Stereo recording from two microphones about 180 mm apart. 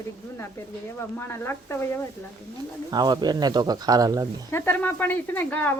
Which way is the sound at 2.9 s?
25° right (ahead or behind).